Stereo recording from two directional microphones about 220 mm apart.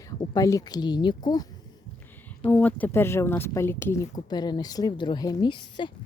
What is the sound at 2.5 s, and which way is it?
Speech, 5° left (ahead or behind).